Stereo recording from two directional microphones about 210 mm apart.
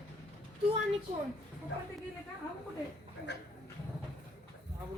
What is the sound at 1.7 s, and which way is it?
Speech, 55° left (ahead or behind).